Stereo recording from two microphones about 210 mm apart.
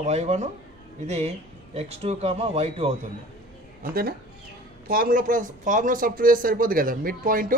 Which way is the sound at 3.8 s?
45° right (ahead or behind).